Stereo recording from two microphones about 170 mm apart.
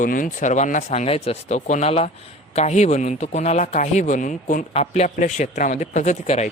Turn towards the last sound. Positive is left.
turn(degrees=45)  # may be behind; listen again after turning